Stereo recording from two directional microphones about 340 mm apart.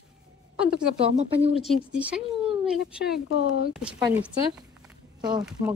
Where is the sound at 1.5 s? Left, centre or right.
Centre.